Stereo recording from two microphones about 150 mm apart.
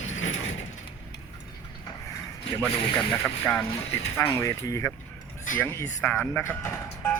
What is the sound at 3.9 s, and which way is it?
Speech, 20° left (ahead or behind).